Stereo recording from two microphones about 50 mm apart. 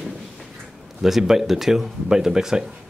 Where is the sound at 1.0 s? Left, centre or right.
Centre.